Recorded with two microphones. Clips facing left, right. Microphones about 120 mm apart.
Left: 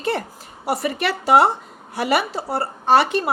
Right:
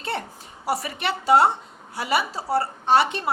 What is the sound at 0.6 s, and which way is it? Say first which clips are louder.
A woman's voice: left 4 dB; 65° left (ahead or behind).